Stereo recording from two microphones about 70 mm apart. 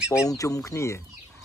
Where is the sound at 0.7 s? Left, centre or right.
Left.